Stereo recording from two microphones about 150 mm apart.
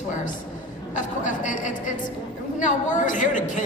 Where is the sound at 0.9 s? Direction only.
55° left (ahead or behind).